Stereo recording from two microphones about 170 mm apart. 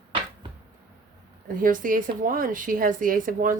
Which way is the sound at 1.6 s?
55° right (ahead or behind).